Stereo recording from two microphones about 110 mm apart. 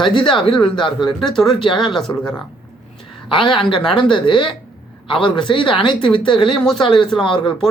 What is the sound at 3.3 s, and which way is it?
Speech, 45° left (ahead or behind).